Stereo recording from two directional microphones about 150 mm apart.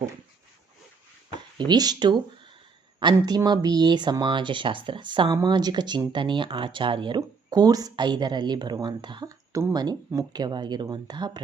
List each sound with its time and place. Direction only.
1.3 s speech: 30° right (ahead or behind)